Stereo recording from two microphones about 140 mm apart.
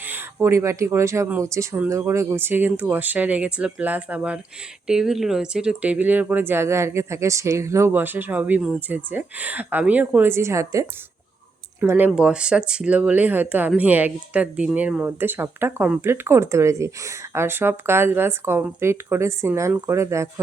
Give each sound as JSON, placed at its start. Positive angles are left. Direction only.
{"t": 0.0, "sound": "speech", "side_deg": -15}